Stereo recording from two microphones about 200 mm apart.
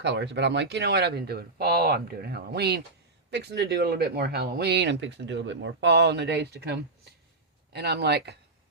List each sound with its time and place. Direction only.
0.0 s speech: 60° right (ahead or behind)